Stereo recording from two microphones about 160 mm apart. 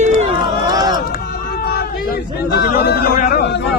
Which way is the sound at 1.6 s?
75° left (ahead or behind).